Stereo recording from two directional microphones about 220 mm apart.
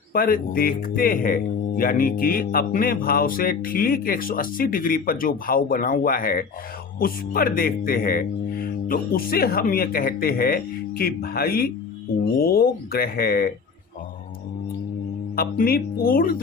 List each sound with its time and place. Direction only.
0.1 s speech: 40° left (ahead or behind)
15.4 s speech: 40° left (ahead or behind)